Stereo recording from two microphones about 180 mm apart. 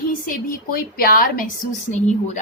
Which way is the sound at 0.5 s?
55° left (ahead or behind).